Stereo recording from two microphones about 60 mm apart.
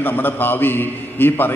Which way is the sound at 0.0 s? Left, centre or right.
Left.